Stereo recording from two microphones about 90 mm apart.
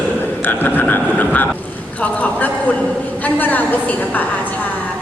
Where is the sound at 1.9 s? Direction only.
15° left (ahead or behind).